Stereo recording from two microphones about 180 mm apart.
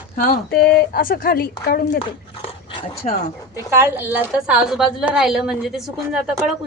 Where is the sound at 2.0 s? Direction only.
30° left (ahead or behind).